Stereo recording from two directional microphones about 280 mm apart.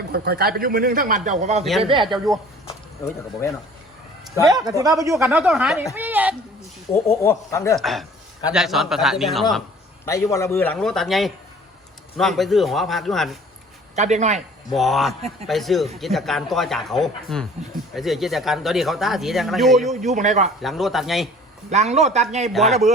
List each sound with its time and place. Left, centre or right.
0.1 s a man's voice: right; by 2.1 s centre
2.6 s speech: centre
4.4 s speech: centre
7.2 s speech: centre
10.1 s speech: centre
13.9 s a man's voice: right
14.7 s speech: centre
19.9 s a man's voice: right
20.6 s speech: centre
21.7 s a man's voice: right